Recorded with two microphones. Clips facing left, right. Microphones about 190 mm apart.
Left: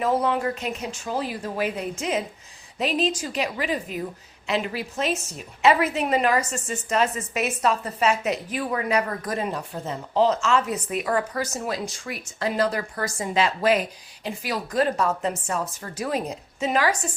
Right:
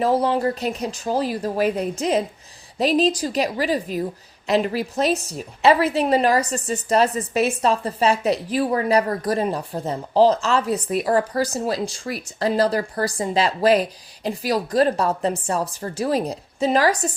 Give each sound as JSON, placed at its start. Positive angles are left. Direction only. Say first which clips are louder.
{"t": 0.0, "sound": "a woman's voice", "louder": "right 4 dB", "side_deg": -35}